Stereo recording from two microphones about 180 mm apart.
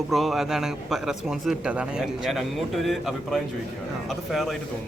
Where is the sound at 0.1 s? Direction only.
Centre (ahead or behind).